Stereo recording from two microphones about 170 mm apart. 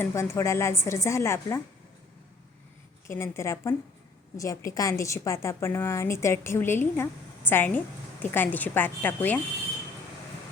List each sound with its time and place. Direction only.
0.0 s a woman's voice: 15° left (ahead or behind)
3.1 s a woman's voice: 15° left (ahead or behind)